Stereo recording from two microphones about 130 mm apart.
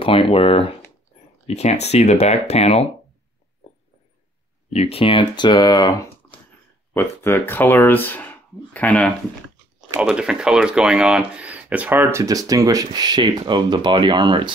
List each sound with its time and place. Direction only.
0.0 s speech: 45° left (ahead or behind)
4.7 s speech: 50° left (ahead or behind); by 5.9 s 30° left (ahead or behind)
6.9 s speech: 20° left (ahead or behind)
9.8 s speech: 5° right (ahead or behind); by 14.5 s 35° right (ahead or behind)